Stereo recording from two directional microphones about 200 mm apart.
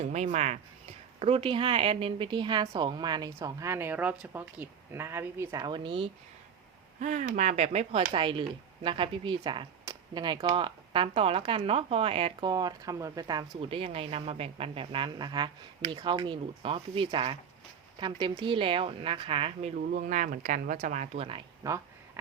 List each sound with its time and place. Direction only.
0.0 s speech: 35° right (ahead or behind)
7.0 s speech: 40° right (ahead or behind)
19.7 s speech: 40° right (ahead or behind); by 21.7 s 25° right (ahead or behind)